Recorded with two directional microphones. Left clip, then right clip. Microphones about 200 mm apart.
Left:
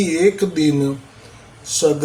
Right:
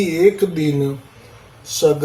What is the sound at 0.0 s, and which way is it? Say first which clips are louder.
Speech: right 2 dB; 10° left (ahead or behind).